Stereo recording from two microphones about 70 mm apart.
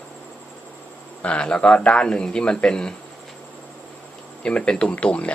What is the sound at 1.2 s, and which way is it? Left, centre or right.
A man's voice, centre.